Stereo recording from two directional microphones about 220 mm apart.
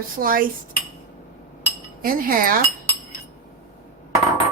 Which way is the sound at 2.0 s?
40° right (ahead or behind).